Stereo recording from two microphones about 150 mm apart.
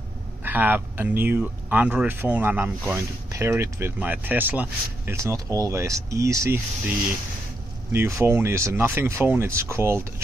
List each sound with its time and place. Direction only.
0.4 s speech: 10° right (ahead or behind)
7.9 s speech: 20° right (ahead or behind)